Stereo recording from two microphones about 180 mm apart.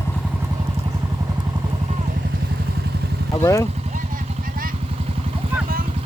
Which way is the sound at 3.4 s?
15° left (ahead or behind).